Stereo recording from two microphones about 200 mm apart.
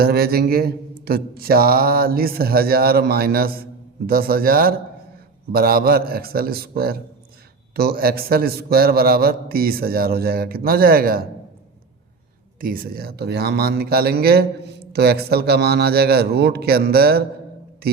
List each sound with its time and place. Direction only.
0.0 s mantra: 50° right (ahead or behind)
12.5 s mantra: 45° right (ahead or behind)
17.8 s speech: 50° right (ahead or behind)